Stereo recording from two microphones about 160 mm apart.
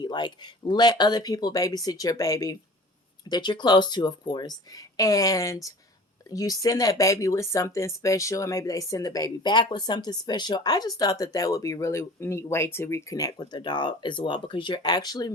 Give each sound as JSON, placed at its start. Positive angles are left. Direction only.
{"t": 0.0, "sound": "speech", "side_deg": 30}